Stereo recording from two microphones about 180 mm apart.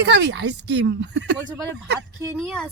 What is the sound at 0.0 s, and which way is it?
Speech, 75° right (ahead or behind).